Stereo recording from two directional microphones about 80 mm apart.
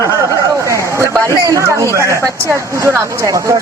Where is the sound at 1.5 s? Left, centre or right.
Right.